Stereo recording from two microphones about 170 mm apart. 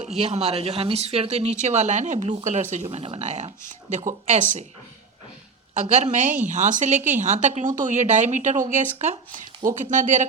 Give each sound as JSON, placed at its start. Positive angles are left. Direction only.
{"t": 0.2, "sound": "speech", "side_deg": -40}
{"t": 5.7, "sound": "speech", "side_deg": -45}